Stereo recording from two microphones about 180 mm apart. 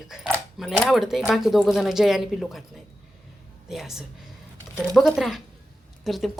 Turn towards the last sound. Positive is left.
turn(degrees=0)  # may be behind; listen again after turning